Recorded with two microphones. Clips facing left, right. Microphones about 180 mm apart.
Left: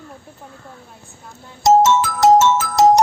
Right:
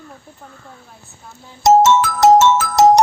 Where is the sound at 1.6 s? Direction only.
70° right (ahead or behind).